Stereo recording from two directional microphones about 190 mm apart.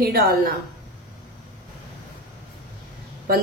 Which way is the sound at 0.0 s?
50° right (ahead or behind).